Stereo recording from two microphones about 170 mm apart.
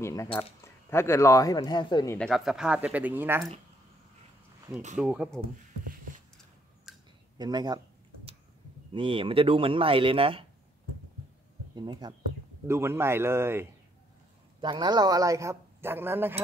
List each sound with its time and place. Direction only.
0.0 s speech: 15° left (ahead or behind)
2.1 s speech: centre (ahead or behind)
4.9 s speech: 5° right (ahead or behind)
6.9 s a sound: centre (ahead or behind)
7.3 s speech: 25° right (ahead or behind)
8.9 s speech: 30° right (ahead or behind)
11.7 s speech: 25° right (ahead or behind)
12.6 s speech: 15° right (ahead or behind)
14.6 s speech: 25° right (ahead or behind)